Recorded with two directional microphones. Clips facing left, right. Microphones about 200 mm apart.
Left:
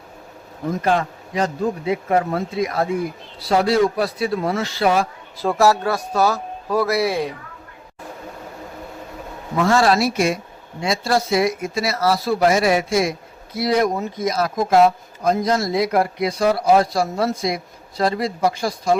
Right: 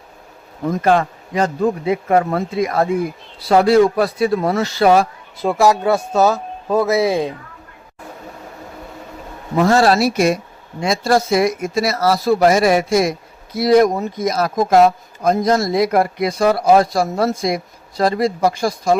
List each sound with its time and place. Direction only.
0.9 s a man's voice: 55° right (ahead or behind)
5.4 s speech: 15° right (ahead or behind)
9.6 s speech: 40° right (ahead or behind)